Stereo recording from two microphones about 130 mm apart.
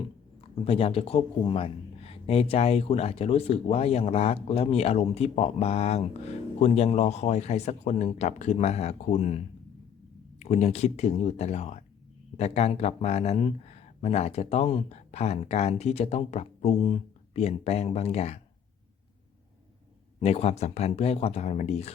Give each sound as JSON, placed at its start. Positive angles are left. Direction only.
{"t": 0.6, "sound": "speech", "side_deg": 45}
{"t": 10.4, "sound": "speech", "side_deg": 60}
{"t": 16.8, "sound": "speech", "side_deg": 50}
{"t": 20.1, "sound": "speech", "side_deg": 50}